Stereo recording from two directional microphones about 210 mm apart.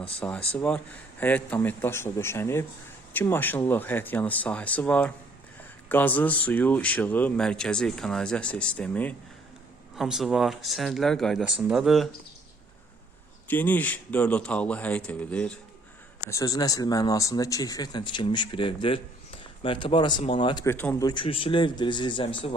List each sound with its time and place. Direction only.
0.2 s speech: 5° left (ahead or behind)
13.5 s a man's voice: 10° left (ahead or behind)
20.7 s speech: 10° left (ahead or behind)
21.1 s a man's voice: 25° left (ahead or behind)